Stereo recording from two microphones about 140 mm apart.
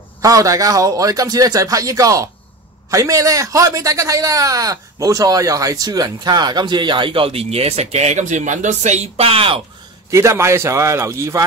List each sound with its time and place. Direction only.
0.2 s speech: 25° right (ahead or behind); by 9.6 s 40° right (ahead or behind)
10.1 s speech: 20° right (ahead or behind)